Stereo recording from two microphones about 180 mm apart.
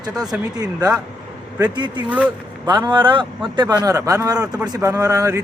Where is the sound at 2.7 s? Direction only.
25° right (ahead or behind).